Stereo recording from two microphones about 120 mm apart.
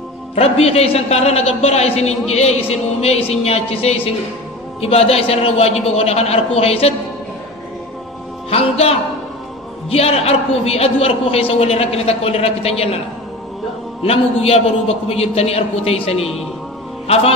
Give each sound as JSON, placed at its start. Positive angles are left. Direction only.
{"t": 0.4, "sound": "a man's voice", "side_deg": 60}
{"t": 8.5, "sound": "music", "side_deg": 55}
{"t": 9.8, "sound": "a man's voice", "side_deg": 55}
{"t": 14.0, "sound": "a man's voice", "side_deg": 55}